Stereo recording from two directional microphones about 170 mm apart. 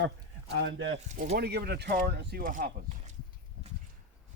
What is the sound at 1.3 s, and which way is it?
Speech, 70° right (ahead or behind).